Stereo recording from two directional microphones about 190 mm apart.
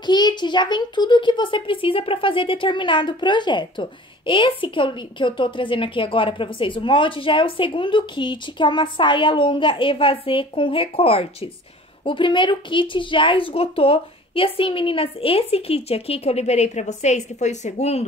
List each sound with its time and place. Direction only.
0.0 s a child's voice: 20° left (ahead or behind)